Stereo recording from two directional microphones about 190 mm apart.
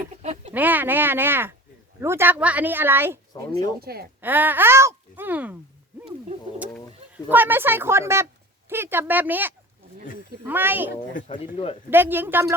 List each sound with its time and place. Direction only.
0.2 s a sound: 35° right (ahead or behind)
0.5 s a woman's voice: 10° right (ahead or behind)
3.8 s speech: 55° right (ahead or behind)
4.2 s speech: 10° right (ahead or behind)
7.3 s a woman's voice: 10° right (ahead or behind)
11.1 s speech: 40° left (ahead or behind)
11.9 s a woman's voice: 10° right (ahead or behind)